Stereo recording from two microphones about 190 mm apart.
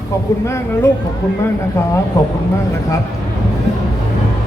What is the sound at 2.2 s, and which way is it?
Speech, 15° left (ahead or behind).